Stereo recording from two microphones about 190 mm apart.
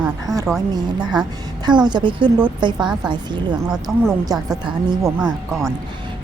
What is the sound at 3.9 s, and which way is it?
Speech, 5° right (ahead or behind).